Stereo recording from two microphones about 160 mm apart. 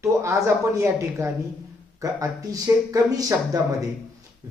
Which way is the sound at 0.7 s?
20° right (ahead or behind).